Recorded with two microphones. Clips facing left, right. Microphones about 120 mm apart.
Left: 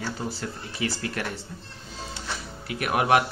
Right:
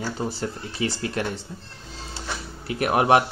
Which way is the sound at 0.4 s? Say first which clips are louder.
Right 3 dB; 25° right (ahead or behind).